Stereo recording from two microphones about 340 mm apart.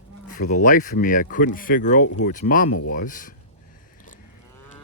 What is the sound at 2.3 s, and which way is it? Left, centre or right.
Speech, left.